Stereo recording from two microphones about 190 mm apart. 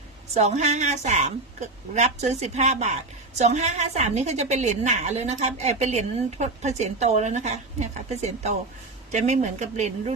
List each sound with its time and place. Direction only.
0.3 s a woman's voice: 35° right (ahead or behind)